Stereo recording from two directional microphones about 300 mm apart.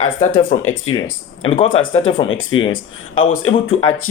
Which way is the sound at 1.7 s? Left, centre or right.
Left.